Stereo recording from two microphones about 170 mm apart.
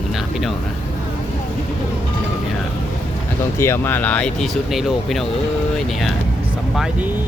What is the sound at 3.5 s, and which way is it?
Speech, 15° left (ahead or behind).